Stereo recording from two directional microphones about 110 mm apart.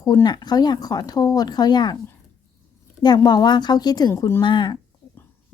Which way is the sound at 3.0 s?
40° left (ahead or behind).